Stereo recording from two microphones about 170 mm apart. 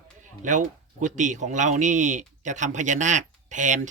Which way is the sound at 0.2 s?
50° right (ahead or behind).